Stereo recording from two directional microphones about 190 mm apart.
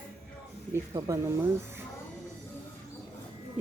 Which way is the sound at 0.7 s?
15° right (ahead or behind).